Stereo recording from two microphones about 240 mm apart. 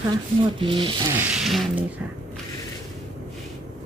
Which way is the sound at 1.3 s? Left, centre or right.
Centre.